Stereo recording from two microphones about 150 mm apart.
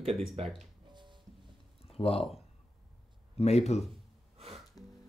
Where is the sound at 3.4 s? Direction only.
45° left (ahead or behind).